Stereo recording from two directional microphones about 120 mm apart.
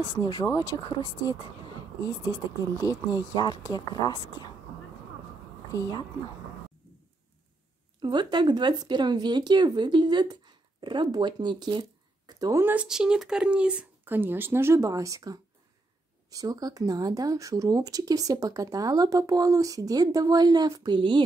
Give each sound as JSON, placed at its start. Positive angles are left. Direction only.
{"t": 0.2, "sound": "a woman's voice", "side_deg": 30}
{"t": 5.7, "sound": "a woman's voice", "side_deg": 30}
{"t": 8.0, "sound": "speech", "side_deg": -40}
{"t": 12.3, "sound": "a sound", "side_deg": -30}
{"t": 12.6, "sound": "speech", "side_deg": -10}